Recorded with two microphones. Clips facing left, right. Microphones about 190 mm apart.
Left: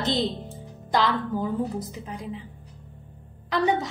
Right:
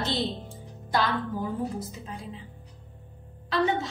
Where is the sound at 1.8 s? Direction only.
15° left (ahead or behind).